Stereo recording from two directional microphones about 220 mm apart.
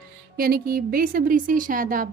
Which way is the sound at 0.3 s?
45° right (ahead or behind).